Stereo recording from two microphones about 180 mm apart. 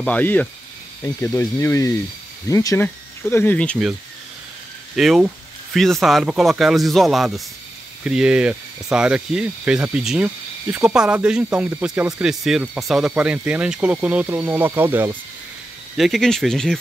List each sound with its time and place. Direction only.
0.0 s speech: 10° left (ahead or behind)
4.9 s speech: centre (ahead or behind)
16.0 s speech: centre (ahead or behind)